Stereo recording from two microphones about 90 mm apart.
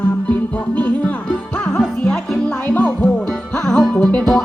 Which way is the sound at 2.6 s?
20° left (ahead or behind).